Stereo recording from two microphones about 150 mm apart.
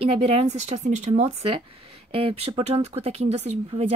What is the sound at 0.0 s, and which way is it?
A woman's voice, 40° right (ahead or behind).